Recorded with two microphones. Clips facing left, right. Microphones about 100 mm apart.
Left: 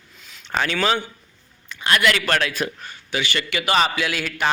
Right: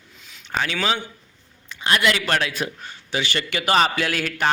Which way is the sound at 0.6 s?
15° right (ahead or behind).